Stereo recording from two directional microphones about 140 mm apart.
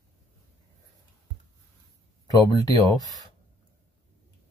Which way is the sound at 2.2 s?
25° left (ahead or behind).